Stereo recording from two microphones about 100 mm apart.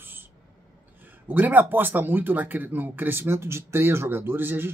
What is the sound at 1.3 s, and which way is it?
Speech, 15° right (ahead or behind).